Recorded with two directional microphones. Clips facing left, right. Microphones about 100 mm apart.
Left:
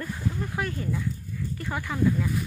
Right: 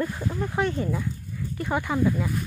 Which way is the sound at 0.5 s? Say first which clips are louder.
Right 5 dB; 25° right (ahead or behind).